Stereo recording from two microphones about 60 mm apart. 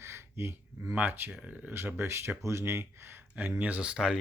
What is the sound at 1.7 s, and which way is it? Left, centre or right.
Speech, right.